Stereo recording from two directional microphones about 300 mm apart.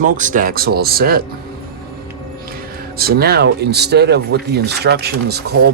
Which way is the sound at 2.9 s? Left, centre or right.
Right.